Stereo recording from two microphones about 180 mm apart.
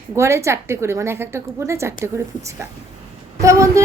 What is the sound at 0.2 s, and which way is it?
A woman's voice, 15° right (ahead or behind).